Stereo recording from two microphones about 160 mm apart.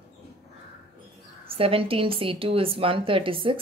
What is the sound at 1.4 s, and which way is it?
A woman's voice, 35° right (ahead or behind).